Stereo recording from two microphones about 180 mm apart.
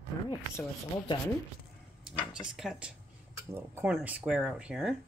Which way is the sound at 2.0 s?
5° right (ahead or behind).